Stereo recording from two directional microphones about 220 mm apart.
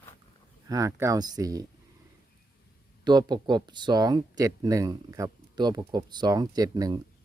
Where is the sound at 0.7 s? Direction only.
15° right (ahead or behind).